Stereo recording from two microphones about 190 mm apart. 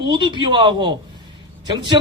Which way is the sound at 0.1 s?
25° right (ahead or behind).